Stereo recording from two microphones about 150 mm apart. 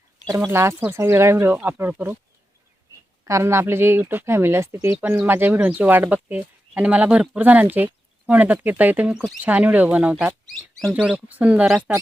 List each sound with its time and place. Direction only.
0.3 s speech: 15° right (ahead or behind)
3.2 s speech: 20° right (ahead or behind)